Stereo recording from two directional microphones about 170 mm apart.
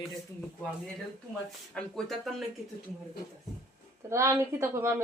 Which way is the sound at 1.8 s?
Centre (ahead or behind).